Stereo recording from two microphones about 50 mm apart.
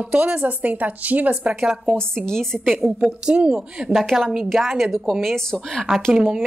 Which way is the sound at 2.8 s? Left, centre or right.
Right.